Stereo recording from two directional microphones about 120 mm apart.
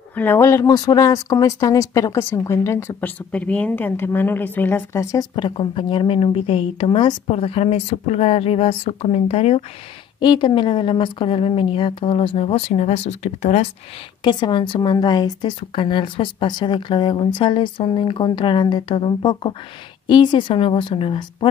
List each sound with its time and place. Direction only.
0.1 s speech: 15° left (ahead or behind)
3.0 s a woman's voice: 10° left (ahead or behind)
5.3 s speech: 45° left (ahead or behind)
10.2 s speech: 40° left (ahead or behind); by 13.7 s 80° left
14.2 s speech: 40° left (ahead or behind)